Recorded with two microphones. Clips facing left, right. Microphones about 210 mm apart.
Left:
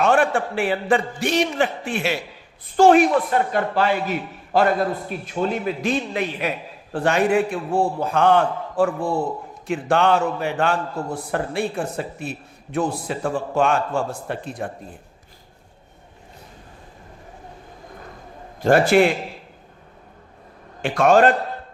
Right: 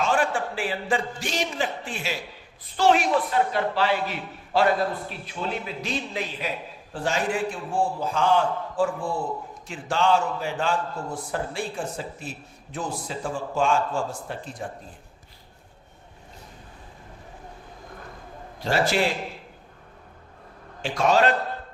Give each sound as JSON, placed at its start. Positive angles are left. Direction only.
{"t": 0.0, "sound": "a man's voice", "side_deg": 60}
{"t": 2.7, "sound": "a man's voice", "side_deg": 50}
{"t": 18.6, "sound": "a man's voice", "side_deg": 55}
{"t": 20.8, "sound": "a man's voice", "side_deg": 55}